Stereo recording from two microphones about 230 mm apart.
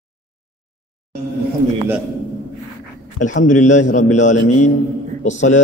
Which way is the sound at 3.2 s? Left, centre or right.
Left.